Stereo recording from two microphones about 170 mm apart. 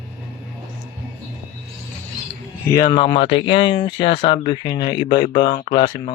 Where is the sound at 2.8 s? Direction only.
25° left (ahead or behind).